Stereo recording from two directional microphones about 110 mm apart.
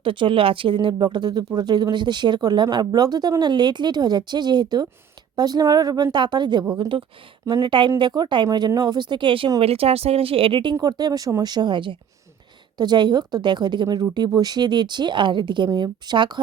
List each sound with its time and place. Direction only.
0.0 s speech: 50° right (ahead or behind)
9.6 s speech: 65° right (ahead or behind); by 16.4 s 45° right (ahead or behind)